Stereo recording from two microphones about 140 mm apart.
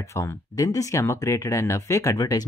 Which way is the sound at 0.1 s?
20° left (ahead or behind).